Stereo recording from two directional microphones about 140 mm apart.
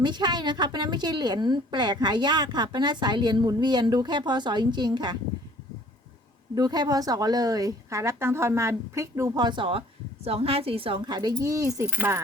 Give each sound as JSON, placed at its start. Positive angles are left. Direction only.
{"t": 0.0, "sound": "a woman's voice", "side_deg": -30}
{"t": 6.6, "sound": "a woman's voice", "side_deg": -30}